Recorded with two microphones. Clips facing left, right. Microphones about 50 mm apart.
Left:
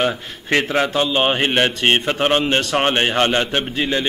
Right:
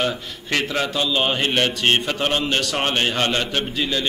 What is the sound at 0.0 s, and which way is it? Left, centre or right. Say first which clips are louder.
A man's voice: left 3 dB; left.